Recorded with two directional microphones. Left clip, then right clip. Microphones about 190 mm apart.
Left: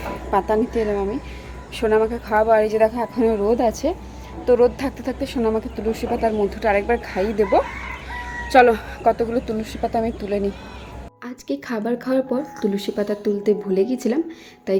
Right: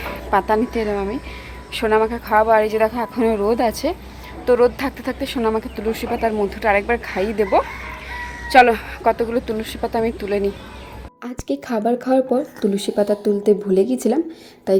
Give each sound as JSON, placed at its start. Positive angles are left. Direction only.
{"t": 0.1, "sound": "a woman's voice", "side_deg": -5}